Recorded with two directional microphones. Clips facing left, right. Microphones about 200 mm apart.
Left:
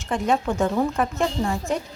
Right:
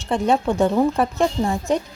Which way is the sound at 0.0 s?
30° right (ahead or behind).